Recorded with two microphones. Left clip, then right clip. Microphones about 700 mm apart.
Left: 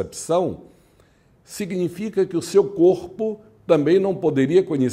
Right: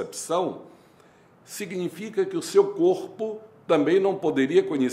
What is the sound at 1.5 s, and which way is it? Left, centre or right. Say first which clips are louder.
Speech: left 5 dB; left.